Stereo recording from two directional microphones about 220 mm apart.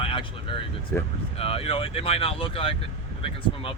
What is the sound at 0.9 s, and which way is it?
Speech, 10° left (ahead or behind).